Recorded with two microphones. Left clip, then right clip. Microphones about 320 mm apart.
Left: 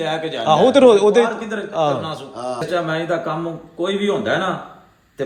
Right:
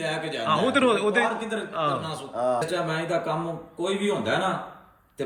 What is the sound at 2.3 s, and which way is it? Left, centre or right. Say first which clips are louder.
Speech: right 4 dB; centre.